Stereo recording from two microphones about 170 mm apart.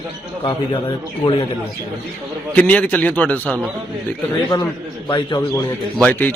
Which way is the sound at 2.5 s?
10° left (ahead or behind).